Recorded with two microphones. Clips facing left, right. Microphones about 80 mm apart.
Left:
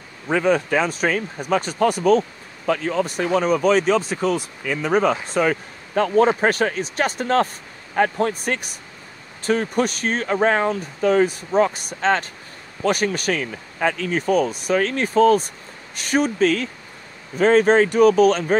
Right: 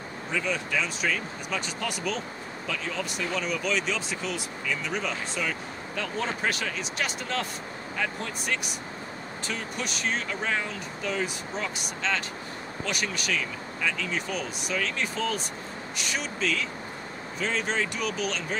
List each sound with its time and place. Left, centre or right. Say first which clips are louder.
0.3 s speech: left 11 dB; left